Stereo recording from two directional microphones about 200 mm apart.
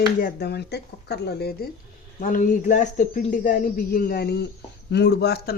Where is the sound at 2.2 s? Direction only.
40° left (ahead or behind).